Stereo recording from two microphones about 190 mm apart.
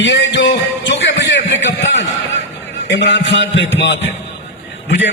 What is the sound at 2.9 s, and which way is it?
A man's voice, 70° left (ahead or behind).